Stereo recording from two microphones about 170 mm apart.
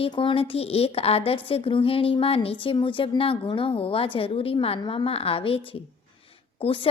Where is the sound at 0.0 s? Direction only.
30° left (ahead or behind).